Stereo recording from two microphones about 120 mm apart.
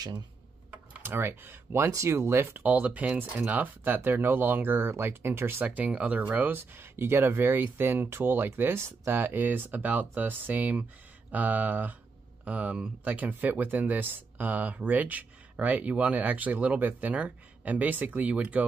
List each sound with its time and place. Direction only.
0.7 s speech: 20° right (ahead or behind)